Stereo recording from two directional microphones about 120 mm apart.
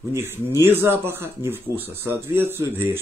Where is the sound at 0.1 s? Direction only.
20° right (ahead or behind).